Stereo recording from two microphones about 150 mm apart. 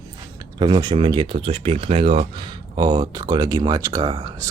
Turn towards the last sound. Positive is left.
turn(degrees=-30)  # may be behind; listen again after turning